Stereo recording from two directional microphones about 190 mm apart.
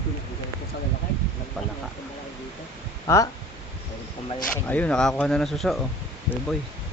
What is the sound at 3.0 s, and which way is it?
Speech, 15° left (ahead or behind).